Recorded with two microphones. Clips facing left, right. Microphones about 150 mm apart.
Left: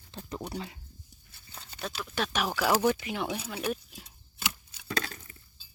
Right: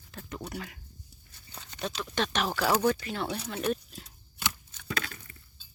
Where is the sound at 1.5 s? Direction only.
5° left (ahead or behind).